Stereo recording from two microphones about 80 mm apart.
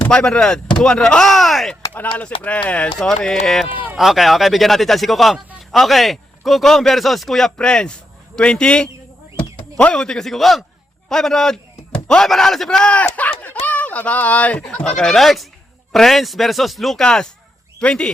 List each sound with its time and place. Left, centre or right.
0.1 s a man's voice: centre
2.4 s a man's voice: centre
14.8 s speech: centre